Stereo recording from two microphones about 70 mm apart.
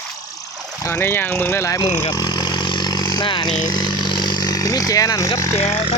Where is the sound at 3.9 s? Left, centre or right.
Left.